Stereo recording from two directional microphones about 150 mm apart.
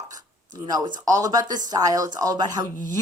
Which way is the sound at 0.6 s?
30° right (ahead or behind).